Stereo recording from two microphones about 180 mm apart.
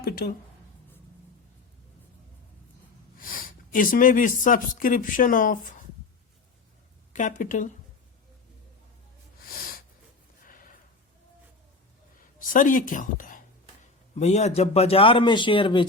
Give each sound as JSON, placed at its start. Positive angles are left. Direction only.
{"t": 0.0, "sound": "speech", "side_deg": 60}
{"t": 3.2, "sound": "speech", "side_deg": 50}
{"t": 7.1, "sound": "speech", "side_deg": 45}
{"t": 10.4, "sound": "a sound", "side_deg": 50}
{"t": 12.4, "sound": "a man's voice", "side_deg": 45}